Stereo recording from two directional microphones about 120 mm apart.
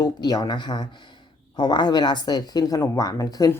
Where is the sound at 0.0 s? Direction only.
35° left (ahead or behind).